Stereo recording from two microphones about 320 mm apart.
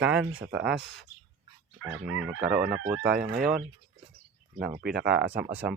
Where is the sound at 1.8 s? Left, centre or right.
Right.